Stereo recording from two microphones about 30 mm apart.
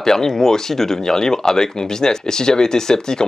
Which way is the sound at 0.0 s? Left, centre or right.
Centre.